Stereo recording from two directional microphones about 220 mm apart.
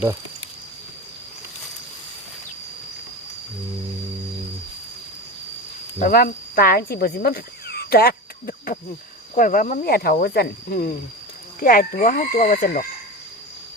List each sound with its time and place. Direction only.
6.0 s speech: 40° left (ahead or behind)